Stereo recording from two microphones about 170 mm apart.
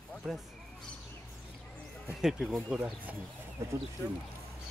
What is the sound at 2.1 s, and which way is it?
Speech, centre (ahead or behind).